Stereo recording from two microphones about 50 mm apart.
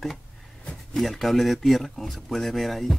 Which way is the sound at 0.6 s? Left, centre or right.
Centre.